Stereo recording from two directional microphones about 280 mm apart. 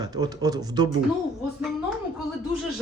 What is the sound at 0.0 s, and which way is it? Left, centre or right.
Speech, centre.